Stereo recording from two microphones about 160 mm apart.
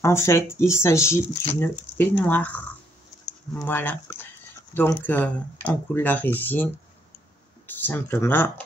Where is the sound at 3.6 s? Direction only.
15° left (ahead or behind).